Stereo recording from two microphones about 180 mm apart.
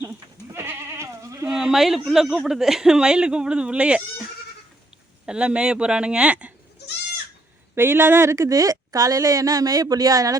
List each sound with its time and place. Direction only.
0.0 s goat: 15° right (ahead or behind)
1.5 s speech: 5° right (ahead or behind)
5.2 s speech: 5° right (ahead or behind)
7.8 s speech: 15° right (ahead or behind)